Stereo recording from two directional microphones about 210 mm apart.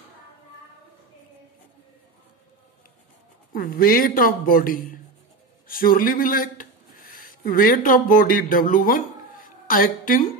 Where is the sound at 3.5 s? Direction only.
45° left (ahead or behind).